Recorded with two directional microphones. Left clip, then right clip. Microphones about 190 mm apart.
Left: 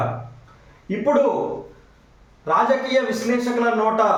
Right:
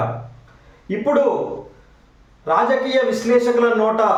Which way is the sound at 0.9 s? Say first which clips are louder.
Right 2 dB; 20° right (ahead or behind).